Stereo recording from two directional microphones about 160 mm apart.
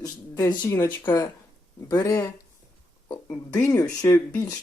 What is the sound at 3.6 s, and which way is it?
Speech, 20° left (ahead or behind).